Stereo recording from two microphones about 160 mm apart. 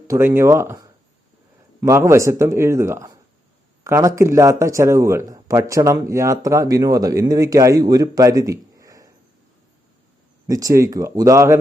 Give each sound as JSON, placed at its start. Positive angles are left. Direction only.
{"t": 0.1, "sound": "speech", "side_deg": -15}
{"t": 10.4, "sound": "speech", "side_deg": -20}